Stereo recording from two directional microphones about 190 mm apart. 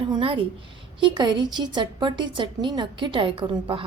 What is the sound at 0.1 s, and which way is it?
A woman's voice, 30° right (ahead or behind).